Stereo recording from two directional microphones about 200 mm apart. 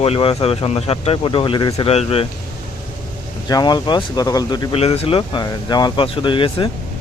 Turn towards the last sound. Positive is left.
turn(degrees=25)  # may be behind; listen again after turning